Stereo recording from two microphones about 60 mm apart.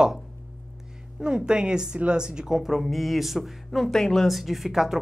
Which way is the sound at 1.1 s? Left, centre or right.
Centre.